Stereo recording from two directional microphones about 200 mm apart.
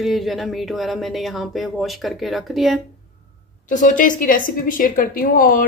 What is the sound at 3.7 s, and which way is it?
Speech, 40° left (ahead or behind).